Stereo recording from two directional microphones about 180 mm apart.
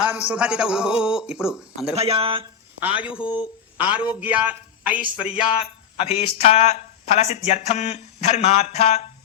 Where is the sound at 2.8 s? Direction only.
10° right (ahead or behind).